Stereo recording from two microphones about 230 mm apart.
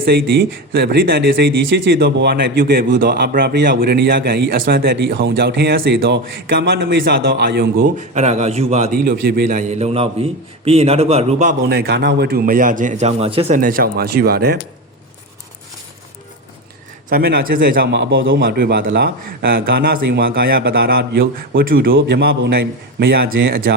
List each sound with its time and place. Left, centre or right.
0.0 s speech: right
13.6 s speech: right
17.1 s speech: right
18.3 s a man's voice: right